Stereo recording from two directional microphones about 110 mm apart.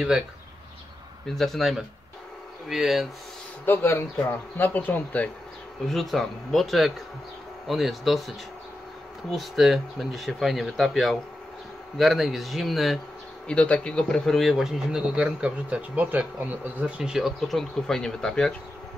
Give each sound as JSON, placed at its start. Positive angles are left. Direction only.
{"t": 1.2, "sound": "speech", "side_deg": 5}
{"t": 3.6, "sound": "speech", "side_deg": 20}
{"t": 5.9, "sound": "speech", "side_deg": 0}
{"t": 9.3, "sound": "speech", "side_deg": 0}
{"t": 13.5, "sound": "speech", "side_deg": 10}